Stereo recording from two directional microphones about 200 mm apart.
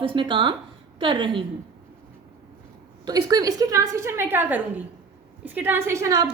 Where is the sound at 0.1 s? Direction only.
25° right (ahead or behind).